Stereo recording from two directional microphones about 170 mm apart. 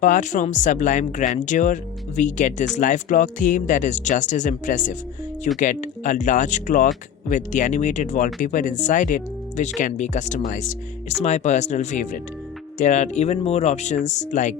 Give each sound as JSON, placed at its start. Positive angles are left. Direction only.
{"t": 0.0, "sound": "speech", "side_deg": 45}